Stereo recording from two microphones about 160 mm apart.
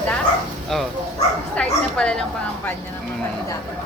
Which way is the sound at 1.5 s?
5° left (ahead or behind).